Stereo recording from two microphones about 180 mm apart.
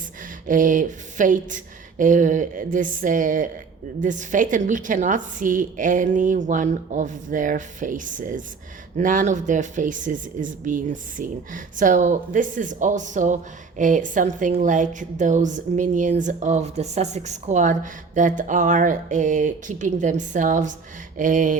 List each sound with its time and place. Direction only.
0.4 s speech: 45° right (ahead or behind)